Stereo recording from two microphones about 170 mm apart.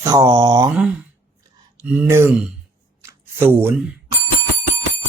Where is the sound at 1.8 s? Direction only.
10° right (ahead or behind).